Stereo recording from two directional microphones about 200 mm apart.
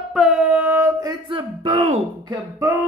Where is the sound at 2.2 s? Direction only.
15° right (ahead or behind).